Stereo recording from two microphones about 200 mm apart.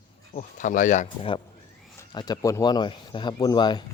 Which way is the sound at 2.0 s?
20° left (ahead or behind).